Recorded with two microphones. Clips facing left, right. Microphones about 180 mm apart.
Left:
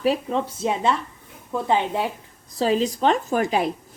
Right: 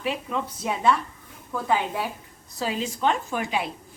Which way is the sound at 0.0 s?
35° left (ahead or behind).